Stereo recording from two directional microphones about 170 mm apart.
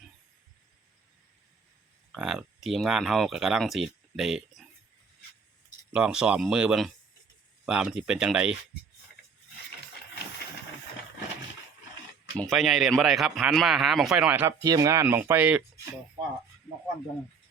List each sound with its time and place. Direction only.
2.1 s speech: centre (ahead or behind)
5.9 s speech: 5° right (ahead or behind)
12.4 s speech: centre (ahead or behind)
14.6 s speech: 20° right (ahead or behind)